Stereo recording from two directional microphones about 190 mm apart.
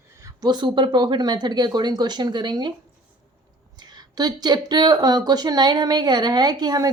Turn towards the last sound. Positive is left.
turn(degrees=-20)  # may be behind; listen again after turning